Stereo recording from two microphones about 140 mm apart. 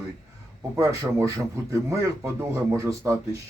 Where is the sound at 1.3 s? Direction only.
25° right (ahead or behind).